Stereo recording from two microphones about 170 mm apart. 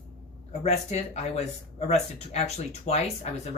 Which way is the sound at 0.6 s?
40° left (ahead or behind).